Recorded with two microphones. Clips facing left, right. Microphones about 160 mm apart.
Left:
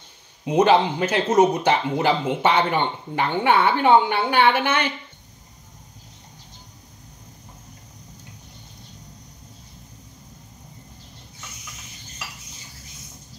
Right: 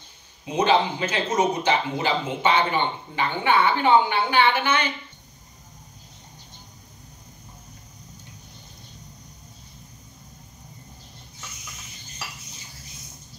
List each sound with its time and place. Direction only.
0.5 s speech: 60° left (ahead or behind)